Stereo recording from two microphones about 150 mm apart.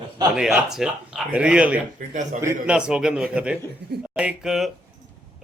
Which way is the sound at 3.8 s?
90° right.